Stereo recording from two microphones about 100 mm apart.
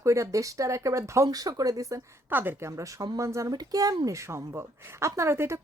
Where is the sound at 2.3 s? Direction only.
20° right (ahead or behind).